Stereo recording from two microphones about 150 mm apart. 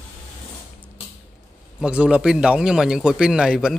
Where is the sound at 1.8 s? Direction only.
5° right (ahead or behind).